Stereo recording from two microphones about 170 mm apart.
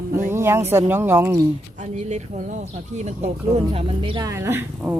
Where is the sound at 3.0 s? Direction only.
40° right (ahead or behind).